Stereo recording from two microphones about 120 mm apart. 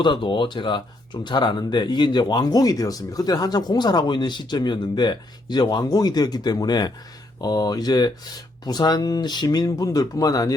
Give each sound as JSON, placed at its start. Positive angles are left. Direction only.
{"t": 0.0, "sound": "speech", "side_deg": 40}